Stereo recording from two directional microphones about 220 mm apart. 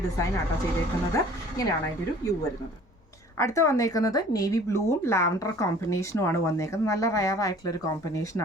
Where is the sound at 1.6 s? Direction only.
15° left (ahead or behind).